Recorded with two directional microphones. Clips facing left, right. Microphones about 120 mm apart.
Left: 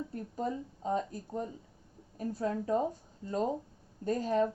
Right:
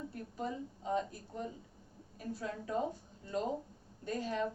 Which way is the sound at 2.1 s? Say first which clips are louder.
Left 7 dB; 40° left (ahead or behind).